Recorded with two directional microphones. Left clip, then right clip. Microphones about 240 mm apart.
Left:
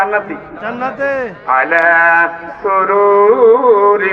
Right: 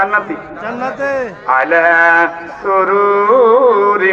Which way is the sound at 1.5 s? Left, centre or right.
Right.